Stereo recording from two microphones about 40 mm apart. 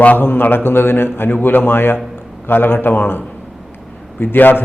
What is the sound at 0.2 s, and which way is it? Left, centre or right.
A man's voice, left.